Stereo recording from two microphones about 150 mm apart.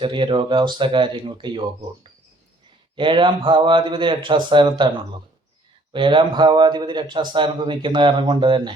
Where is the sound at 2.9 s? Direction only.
35° right (ahead or behind).